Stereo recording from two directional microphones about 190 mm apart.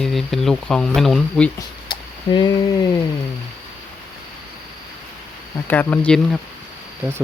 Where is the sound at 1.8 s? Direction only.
25° left (ahead or behind).